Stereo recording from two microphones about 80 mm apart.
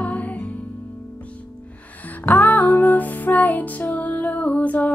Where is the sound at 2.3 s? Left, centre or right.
Left.